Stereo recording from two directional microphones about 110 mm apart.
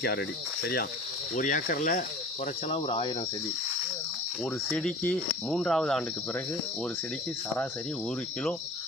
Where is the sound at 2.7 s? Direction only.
60° left (ahead or behind).